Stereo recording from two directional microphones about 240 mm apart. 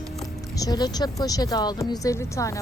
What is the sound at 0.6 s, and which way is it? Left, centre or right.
Speech, centre.